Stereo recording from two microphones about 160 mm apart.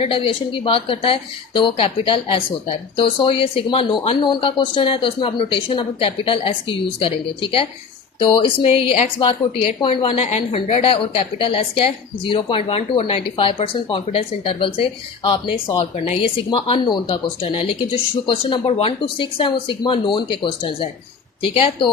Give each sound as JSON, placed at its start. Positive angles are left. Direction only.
{"t": 0.0, "sound": "a woman's voice", "side_deg": 35}